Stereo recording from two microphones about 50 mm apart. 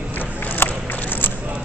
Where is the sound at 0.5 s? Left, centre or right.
Left.